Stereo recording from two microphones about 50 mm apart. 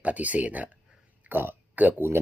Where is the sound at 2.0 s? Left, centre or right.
Right.